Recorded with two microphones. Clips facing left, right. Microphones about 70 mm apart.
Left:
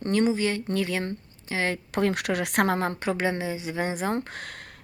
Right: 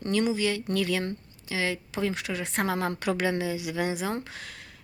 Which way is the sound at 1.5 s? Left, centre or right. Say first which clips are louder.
Left 3 dB; left.